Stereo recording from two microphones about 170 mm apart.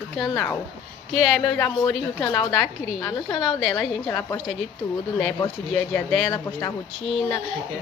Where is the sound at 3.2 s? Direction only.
30° left (ahead or behind).